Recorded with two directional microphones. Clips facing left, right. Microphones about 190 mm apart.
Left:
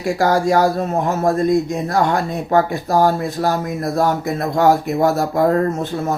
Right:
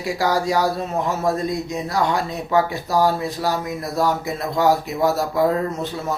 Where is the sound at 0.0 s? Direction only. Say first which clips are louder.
Left 4 dB; 50° left (ahead or behind).